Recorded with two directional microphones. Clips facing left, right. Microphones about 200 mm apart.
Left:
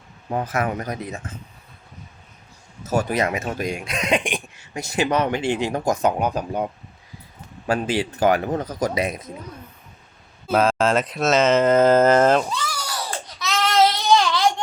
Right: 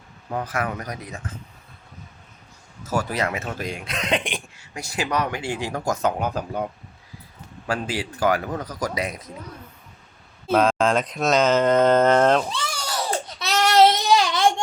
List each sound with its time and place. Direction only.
0.3 s speech: 25° left (ahead or behind)
2.8 s speech: 20° left (ahead or behind)
7.7 s speech: 20° left (ahead or behind)
10.5 s speech: 5° left (ahead or behind)
12.5 s a sound: 25° right (ahead or behind)